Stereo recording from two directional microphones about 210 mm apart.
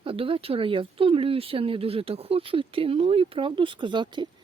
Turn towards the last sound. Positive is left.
turn(degrees=-20)  # may be behind; listen again after turning